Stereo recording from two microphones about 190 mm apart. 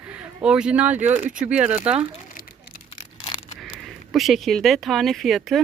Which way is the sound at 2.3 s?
45° left (ahead or behind).